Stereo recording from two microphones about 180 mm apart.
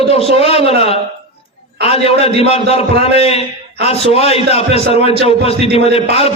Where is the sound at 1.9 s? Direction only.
35° left (ahead or behind).